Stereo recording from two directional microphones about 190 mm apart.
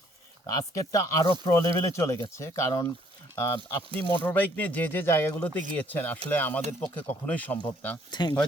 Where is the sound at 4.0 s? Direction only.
10° left (ahead or behind).